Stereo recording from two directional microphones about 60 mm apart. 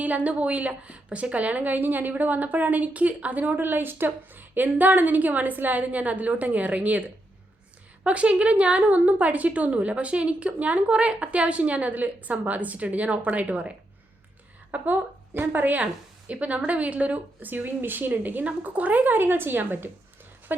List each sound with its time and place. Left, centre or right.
0.0 s a woman's voice: right
8.0 s a woman's voice: centre
14.7 s a woman's voice: right